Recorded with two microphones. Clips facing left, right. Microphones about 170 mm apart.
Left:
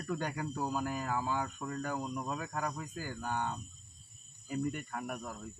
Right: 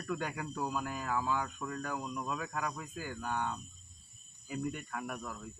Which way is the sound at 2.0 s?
5° left (ahead or behind).